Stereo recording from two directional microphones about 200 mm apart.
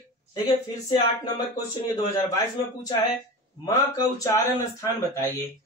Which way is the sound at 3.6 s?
15° left (ahead or behind).